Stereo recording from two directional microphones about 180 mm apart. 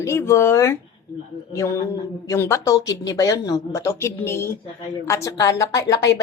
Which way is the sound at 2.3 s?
15° left (ahead or behind).